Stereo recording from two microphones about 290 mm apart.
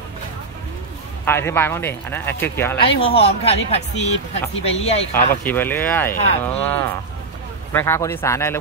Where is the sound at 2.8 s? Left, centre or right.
Centre.